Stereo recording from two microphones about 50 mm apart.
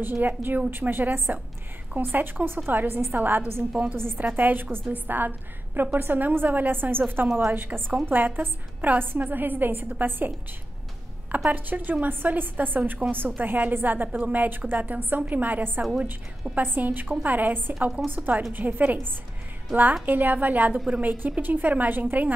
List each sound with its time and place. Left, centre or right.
0.0 s a woman's voice: right
4.2 s a woman's voice: right
11.3 s a woman's voice: right